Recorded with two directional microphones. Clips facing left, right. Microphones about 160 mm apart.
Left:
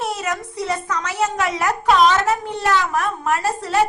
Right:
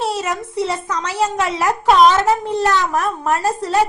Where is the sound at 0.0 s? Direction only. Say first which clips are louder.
Right 3 dB; 30° right (ahead or behind).